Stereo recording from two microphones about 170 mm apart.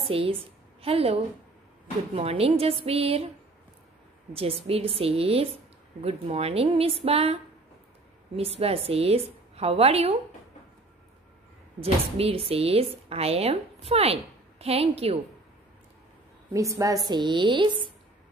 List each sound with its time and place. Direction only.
0.1 s speech: 30° right (ahead or behind)
4.3 s speech: 35° right (ahead or behind)
8.4 s speech: 35° right (ahead or behind)
11.8 s speech: 35° right (ahead or behind)
16.5 s a woman's voice: 20° right (ahead or behind)